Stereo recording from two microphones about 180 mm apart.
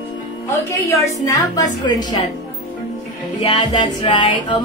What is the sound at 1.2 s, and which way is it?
Speech, 20° left (ahead or behind).